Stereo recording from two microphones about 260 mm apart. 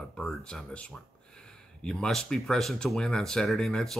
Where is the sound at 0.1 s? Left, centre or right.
Centre.